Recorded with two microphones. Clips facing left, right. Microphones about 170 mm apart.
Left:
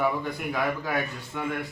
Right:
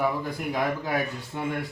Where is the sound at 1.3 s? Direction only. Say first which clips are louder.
Right 1 dB; 30° right (ahead or behind).